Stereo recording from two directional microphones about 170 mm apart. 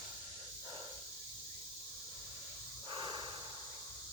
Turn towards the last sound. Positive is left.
turn(degrees=-30)  # may be behind; listen again after turning